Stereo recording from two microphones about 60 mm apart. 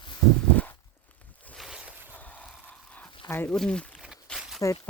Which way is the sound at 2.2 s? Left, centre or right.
Left.